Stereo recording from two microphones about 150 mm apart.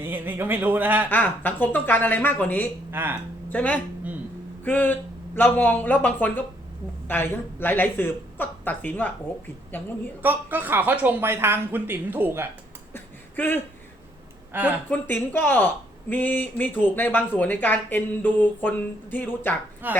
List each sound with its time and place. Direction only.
0.0 s a woman's voice: 15° right (ahead or behind)
1.1 s speech: 10° left (ahead or behind)
2.9 s speech: 15° right (ahead or behind)
3.5 s speech: 10° left (ahead or behind)
10.2 s a woman's voice: 10° right (ahead or behind)
12.9 s a sound: 15° left (ahead or behind)
14.5 s a woman's voice: 15° right (ahead or behind)
14.8 s speech: 10° left (ahead or behind)
19.8 s a woman's voice: 10° right (ahead or behind)